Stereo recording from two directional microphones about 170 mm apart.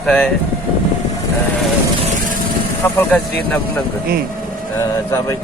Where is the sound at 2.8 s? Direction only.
15° left (ahead or behind).